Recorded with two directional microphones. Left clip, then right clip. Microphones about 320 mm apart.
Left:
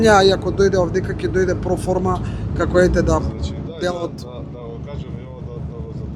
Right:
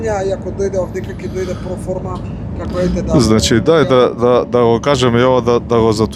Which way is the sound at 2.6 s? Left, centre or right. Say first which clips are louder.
Left 4 dB; left.